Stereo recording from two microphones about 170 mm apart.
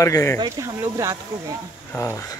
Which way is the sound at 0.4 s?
20° right (ahead or behind).